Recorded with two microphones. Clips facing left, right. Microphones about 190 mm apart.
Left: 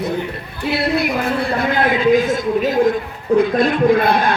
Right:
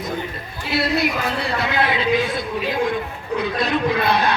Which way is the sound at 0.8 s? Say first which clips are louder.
Left 1 dB; 55° left (ahead or behind).